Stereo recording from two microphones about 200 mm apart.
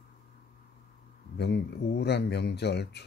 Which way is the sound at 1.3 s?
55° left (ahead or behind).